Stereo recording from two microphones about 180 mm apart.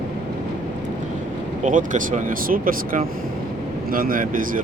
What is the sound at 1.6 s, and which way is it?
Speech, 45° right (ahead or behind).